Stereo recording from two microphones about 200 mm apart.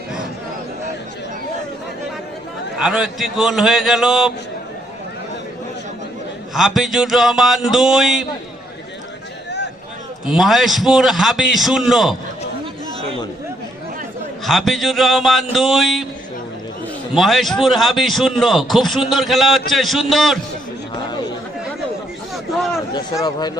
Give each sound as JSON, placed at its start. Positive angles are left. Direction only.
{"t": 2.7, "sound": "a man's voice", "side_deg": -5}
{"t": 6.5, "sound": "a man's voice", "side_deg": 0}
{"t": 10.2, "sound": "a man's voice", "side_deg": 0}
{"t": 14.4, "sound": "a man's voice", "side_deg": 0}
{"t": 17.2, "sound": "a man's voice", "side_deg": 0}
{"t": 22.5, "sound": "a sound", "side_deg": 0}
{"t": 23.2, "sound": "speech", "side_deg": 20}